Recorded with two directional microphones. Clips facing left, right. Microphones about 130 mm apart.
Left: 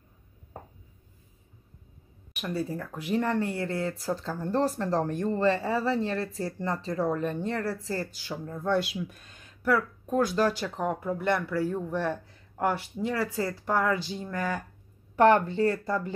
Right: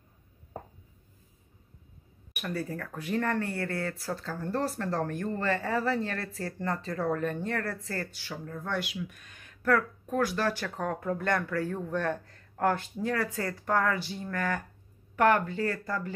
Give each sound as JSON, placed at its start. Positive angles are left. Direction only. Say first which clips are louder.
{"t": 2.4, "sound": "speech", "louder": "left 3 dB", "side_deg": 20}
{"t": 9.6, "sound": "a sound", "louder": "even", "side_deg": 10}
{"t": 10.1, "sound": "speech", "louder": "left 4 dB", "side_deg": 20}
{"t": 15.1, "sound": "speech", "louder": "left 4 dB", "side_deg": 30}